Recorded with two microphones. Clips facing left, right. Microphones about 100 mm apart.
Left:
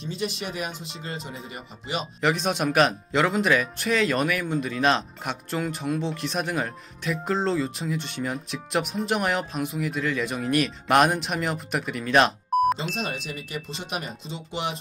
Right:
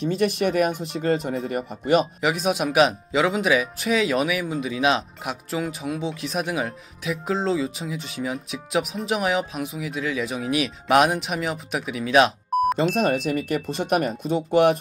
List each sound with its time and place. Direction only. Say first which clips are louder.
0.0 s speech: right 9 dB; 60° right (ahead or behind)
2.2 s speech: right 1 dB; 5° right (ahead or behind)
13.3 s speech: right 10 dB; 55° right (ahead or behind)